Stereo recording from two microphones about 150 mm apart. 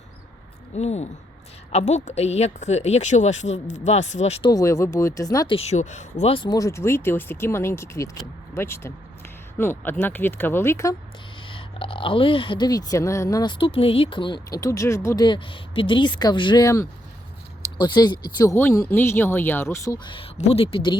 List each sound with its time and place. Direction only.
0.8 s speech: 45° left (ahead or behind)
4.4 s speech: 20° left (ahead or behind)
5.5 s speech: 50° left (ahead or behind)
6.3 s speech: 30° left (ahead or behind)
11.4 s speech: 35° left (ahead or behind)
17.7 s speech: 30° left (ahead or behind)
20.1 s speech: 40° left (ahead or behind)